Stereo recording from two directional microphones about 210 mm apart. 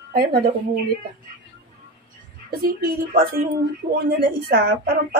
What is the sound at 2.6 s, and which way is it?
A woman's voice, 45° right (ahead or behind).